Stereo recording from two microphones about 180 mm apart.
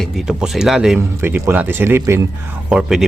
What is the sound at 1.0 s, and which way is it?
Speech, 15° right (ahead or behind).